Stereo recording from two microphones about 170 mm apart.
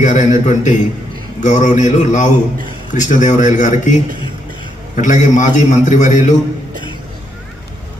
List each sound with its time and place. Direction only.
0.0 s speech: 45° left (ahead or behind)
4.9 s speech: 45° left (ahead or behind)